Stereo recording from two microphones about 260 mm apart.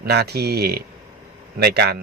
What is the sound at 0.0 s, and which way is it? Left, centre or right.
Speech, right.